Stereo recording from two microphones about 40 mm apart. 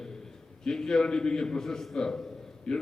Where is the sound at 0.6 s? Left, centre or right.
Centre.